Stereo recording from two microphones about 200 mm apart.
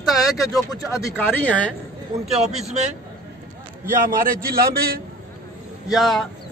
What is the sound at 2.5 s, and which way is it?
Speech, 35° right (ahead or behind).